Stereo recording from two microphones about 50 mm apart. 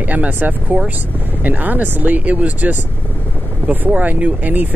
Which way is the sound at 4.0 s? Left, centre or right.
Right.